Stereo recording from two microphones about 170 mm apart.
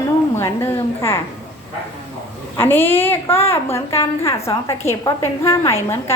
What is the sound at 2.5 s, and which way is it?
A woman's voice, 10° left (ahead or behind).